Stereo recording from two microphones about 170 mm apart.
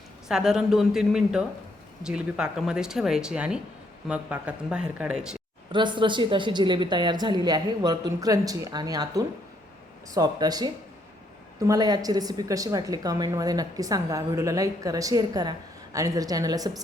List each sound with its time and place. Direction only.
0.3 s speech: 5° right (ahead or behind)
5.7 s a woman's voice: 30° right (ahead or behind)